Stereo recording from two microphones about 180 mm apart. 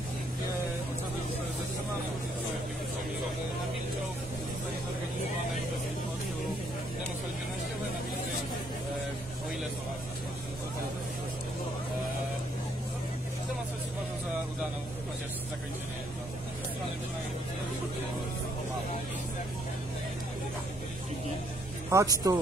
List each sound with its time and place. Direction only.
21.9 s speech: 20° right (ahead or behind)